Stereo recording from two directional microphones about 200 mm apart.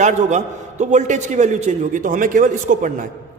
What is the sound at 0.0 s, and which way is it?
Speech, 35° right (ahead or behind).